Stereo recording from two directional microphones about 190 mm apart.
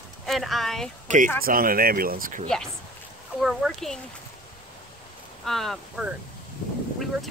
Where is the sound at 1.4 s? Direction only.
50° right (ahead or behind).